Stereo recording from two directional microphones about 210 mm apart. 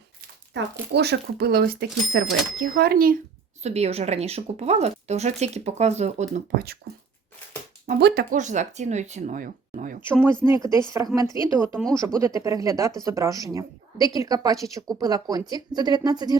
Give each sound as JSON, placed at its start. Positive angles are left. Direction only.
{"t": 0.5, "sound": "speech", "side_deg": -50}
{"t": 3.6, "sound": "speech", "side_deg": -30}
{"t": 6.3, "sound": "speech", "side_deg": -45}
{"t": 7.9, "sound": "speech", "side_deg": -50}
{"t": 10.1, "sound": "a woman's voice", "side_deg": -10}